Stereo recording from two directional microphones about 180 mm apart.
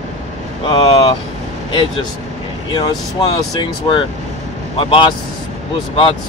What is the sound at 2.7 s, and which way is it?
Speech, 25° left (ahead or behind).